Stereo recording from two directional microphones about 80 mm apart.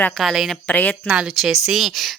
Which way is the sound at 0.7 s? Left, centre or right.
Centre.